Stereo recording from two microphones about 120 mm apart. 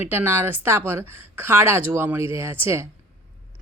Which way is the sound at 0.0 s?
15° right (ahead or behind).